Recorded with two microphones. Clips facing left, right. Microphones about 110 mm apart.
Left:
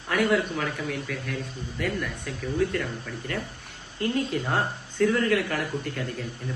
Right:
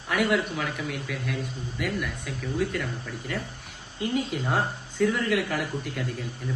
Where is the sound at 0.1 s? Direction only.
5° right (ahead or behind).